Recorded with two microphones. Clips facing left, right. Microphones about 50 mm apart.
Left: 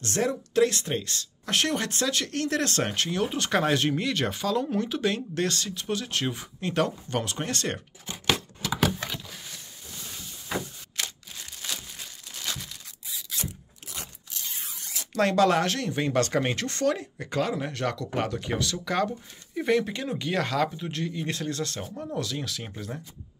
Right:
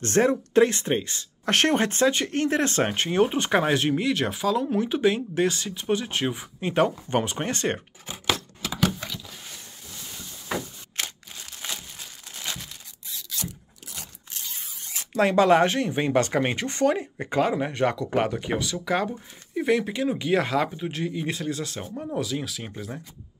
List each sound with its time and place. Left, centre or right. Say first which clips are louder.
0.0 s speech: right 6 dB; right
1.4 s speech: right 5 dB; right
1.8 s speech: right 6 dB; right; by 4.8 s centre
4.8 s speech: right 5 dB; right
6.7 s speech: right 4 dB; right
11.6 s crumpling: right 1 dB; right
15.1 s speech: right 3 dB; centre